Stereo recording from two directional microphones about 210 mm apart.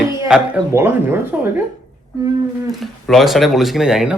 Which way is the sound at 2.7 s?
Centre (ahead or behind).